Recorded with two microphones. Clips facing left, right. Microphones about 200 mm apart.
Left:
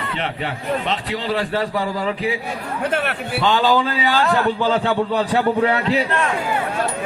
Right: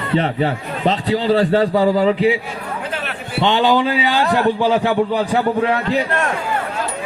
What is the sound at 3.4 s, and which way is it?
A man's voice, 20° right (ahead or behind).